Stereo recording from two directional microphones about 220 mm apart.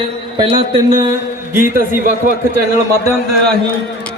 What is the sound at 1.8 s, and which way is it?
Speech, 40° right (ahead or behind).